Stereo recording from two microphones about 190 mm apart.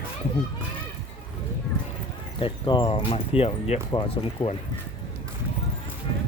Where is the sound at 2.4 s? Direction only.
25° left (ahead or behind).